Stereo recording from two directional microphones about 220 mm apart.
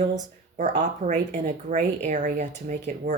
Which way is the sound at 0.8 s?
35° right (ahead or behind).